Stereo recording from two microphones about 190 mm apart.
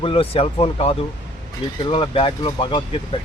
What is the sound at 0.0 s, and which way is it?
Speech, 30° left (ahead or behind).